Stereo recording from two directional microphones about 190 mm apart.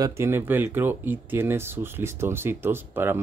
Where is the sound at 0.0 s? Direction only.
15° right (ahead or behind).